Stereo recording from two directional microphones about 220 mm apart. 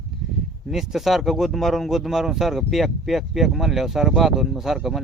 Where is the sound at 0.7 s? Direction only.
Centre (ahead or behind).